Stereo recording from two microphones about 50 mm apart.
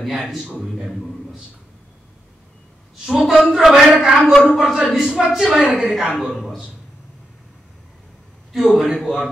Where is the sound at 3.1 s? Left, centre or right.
Centre.